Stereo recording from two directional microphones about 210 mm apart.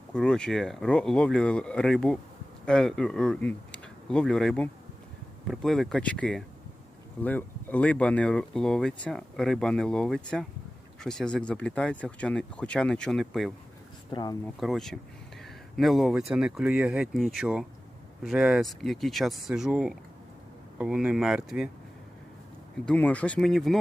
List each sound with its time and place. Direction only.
0.1 s speech: 5° left (ahead or behind)
14.1 s speech: 20° left (ahead or behind)
14.6 s speech: centre (ahead or behind)
22.9 s speech: 5° left (ahead or behind)